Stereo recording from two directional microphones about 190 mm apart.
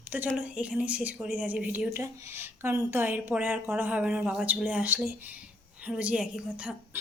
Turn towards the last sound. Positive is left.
turn(degrees=-5)  # may be behind; listen again after turning